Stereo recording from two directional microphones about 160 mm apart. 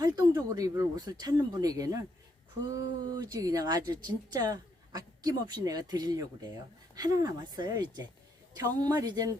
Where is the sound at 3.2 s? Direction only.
25° right (ahead or behind).